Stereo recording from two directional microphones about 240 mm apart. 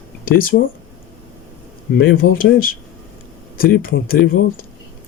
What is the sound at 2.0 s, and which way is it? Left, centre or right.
Speech, left.